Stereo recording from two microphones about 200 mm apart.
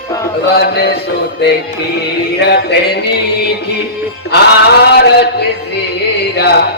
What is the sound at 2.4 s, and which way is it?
Mantra, 55° left (ahead or behind).